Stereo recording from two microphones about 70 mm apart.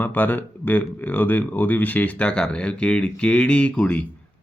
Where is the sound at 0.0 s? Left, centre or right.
Left.